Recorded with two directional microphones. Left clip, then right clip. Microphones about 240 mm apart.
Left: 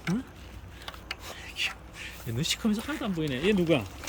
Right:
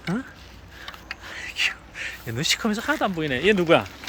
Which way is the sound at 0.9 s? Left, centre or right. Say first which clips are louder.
Right 2 dB; left.